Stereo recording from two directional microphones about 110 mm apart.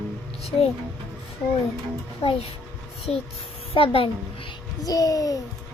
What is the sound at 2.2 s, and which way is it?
A child's voice, 60° left (ahead or behind).